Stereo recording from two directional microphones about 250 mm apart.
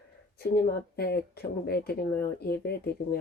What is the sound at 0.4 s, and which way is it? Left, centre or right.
Speech, left.